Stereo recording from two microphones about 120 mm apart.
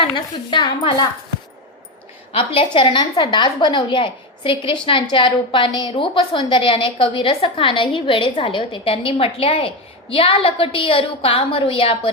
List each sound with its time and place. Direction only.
0.5 s a woman's voice: 40° left (ahead or behind)
2.3 s a woman's voice: 50° left (ahead or behind)